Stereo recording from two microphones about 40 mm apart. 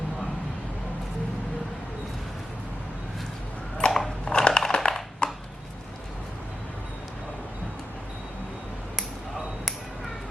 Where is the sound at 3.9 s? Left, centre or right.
Centre.